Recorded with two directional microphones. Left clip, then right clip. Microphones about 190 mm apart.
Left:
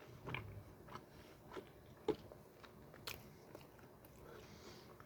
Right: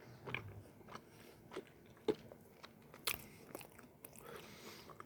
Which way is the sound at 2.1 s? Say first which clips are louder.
Right 2 dB; 20° right (ahead or behind).